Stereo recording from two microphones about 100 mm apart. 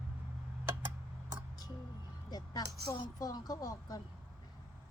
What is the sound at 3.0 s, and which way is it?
Speech, 40° left (ahead or behind).